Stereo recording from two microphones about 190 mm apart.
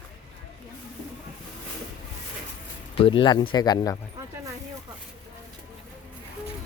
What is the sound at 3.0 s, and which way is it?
Speech, 30° left (ahead or behind).